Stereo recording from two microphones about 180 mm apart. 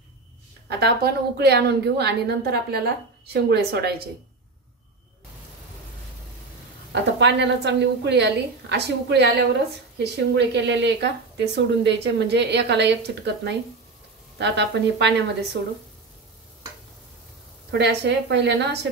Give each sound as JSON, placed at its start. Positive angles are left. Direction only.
{"t": 0.7, "sound": "a woman's voice", "side_deg": -65}
{"t": 6.9, "sound": "speech", "side_deg": -75}
{"t": 17.6, "sound": "speech", "side_deg": -70}